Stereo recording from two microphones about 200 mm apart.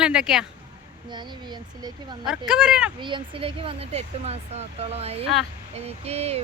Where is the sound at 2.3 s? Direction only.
5° right (ahead or behind).